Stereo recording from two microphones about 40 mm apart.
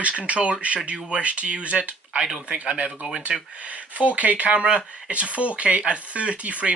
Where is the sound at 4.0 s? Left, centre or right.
Right.